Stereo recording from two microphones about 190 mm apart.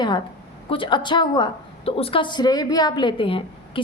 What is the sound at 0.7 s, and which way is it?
A woman's voice, 25° left (ahead or behind).